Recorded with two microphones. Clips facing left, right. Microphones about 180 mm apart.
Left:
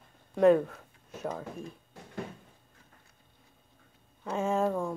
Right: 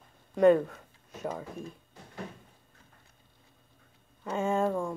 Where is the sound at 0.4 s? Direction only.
Centre (ahead or behind).